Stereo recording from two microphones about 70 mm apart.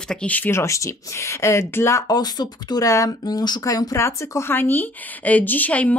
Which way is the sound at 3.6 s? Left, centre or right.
Left.